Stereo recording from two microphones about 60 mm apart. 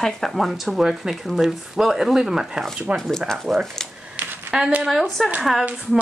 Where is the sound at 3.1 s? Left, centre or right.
Centre.